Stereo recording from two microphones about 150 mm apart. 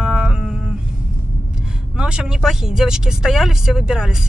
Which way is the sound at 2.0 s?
5° right (ahead or behind).